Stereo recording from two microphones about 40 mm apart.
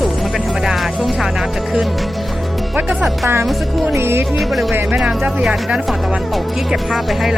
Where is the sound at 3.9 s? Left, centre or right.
Right.